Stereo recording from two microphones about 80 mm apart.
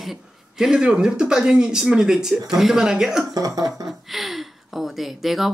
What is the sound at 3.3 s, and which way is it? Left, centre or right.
Speech, right.